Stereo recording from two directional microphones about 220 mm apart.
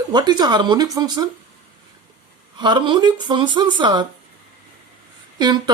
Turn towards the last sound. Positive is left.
turn(degrees=-20)  # may be behind; listen again after turning